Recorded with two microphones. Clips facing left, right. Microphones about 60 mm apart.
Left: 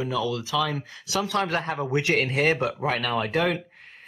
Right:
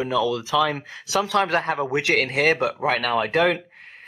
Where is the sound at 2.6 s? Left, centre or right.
Right.